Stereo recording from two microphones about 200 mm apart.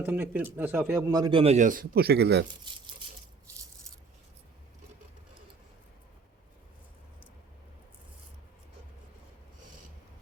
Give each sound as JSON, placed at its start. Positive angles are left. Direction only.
{"t": 0.0, "sound": "speech", "side_deg": -10}